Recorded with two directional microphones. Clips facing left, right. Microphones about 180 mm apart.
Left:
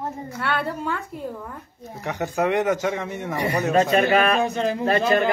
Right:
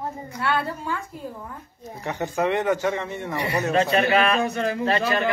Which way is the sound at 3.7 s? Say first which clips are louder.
Left 2 dB; 45° left (ahead or behind).